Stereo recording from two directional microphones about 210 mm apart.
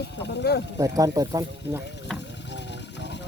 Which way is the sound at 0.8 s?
15° right (ahead or behind).